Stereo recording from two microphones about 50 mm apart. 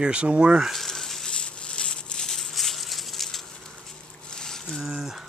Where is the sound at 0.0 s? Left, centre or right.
Right.